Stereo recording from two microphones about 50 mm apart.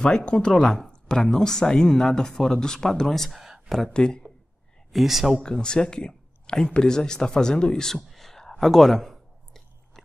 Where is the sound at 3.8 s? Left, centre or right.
Centre.